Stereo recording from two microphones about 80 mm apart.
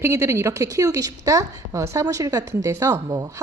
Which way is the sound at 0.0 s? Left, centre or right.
Right.